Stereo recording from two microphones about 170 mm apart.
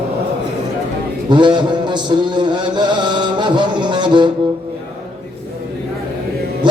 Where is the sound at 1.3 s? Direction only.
25° right (ahead or behind).